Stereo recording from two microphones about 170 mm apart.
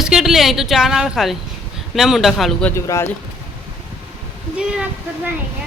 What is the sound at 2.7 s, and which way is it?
Speech, 15° left (ahead or behind).